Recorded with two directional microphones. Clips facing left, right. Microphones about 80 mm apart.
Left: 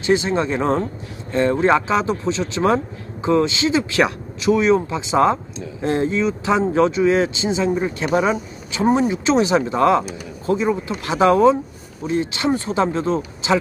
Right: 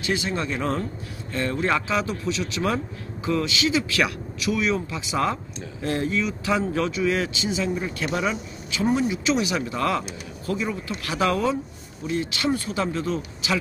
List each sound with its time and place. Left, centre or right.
0.0 s speech: left